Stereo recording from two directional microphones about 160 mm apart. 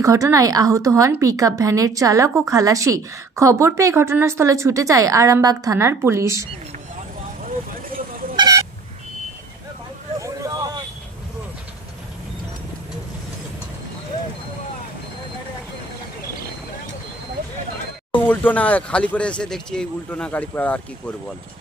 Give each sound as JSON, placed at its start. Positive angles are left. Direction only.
{"t": 0.0, "sound": "a woman's voice", "side_deg": -20}
{"t": 8.4, "sound": "vehicle", "side_deg": -25}
{"t": 10.2, "sound": "vehicle", "side_deg": -20}
{"t": 18.1, "sound": "speech", "side_deg": 10}